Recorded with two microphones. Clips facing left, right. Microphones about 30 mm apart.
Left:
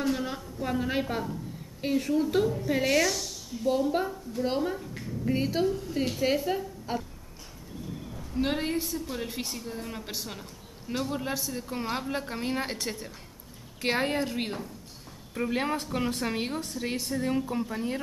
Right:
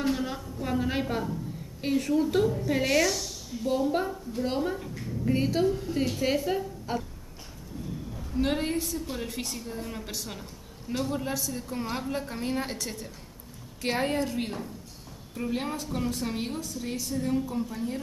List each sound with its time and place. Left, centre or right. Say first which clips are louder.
0.1 s a woman's voice: right 1 dB; centre
8.2 s a woman's voice: right 1 dB; centre; by 16.3 s left
16.3 s a woman's voice: left 1 dB; left